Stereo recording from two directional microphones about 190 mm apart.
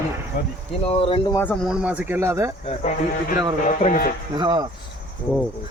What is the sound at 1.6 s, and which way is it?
Speech, 5° right (ahead or behind).